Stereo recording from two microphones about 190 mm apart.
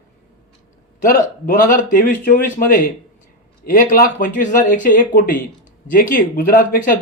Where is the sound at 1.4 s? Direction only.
45° left (ahead or behind).